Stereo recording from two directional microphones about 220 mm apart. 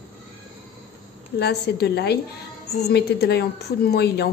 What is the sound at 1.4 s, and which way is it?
A woman's voice, 50° left (ahead or behind).